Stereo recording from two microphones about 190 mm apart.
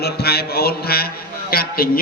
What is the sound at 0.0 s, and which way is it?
Mantra, 55° left (ahead or behind).